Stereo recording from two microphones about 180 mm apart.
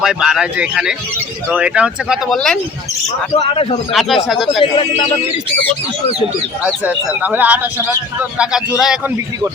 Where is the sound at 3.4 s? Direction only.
30° left (ahead or behind).